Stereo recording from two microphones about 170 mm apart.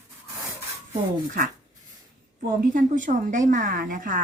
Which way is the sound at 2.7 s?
50° right (ahead or behind).